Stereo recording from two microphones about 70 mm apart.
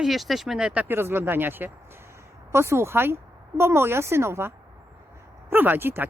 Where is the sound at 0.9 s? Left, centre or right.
Right.